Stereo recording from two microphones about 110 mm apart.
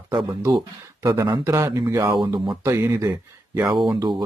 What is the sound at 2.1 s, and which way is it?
Speech, 45° right (ahead or behind).